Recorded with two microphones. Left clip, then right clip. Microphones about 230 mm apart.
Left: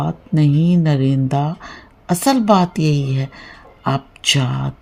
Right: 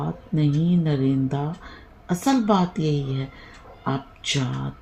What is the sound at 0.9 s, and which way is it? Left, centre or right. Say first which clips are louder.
A woman's voice: left 5 dB; left.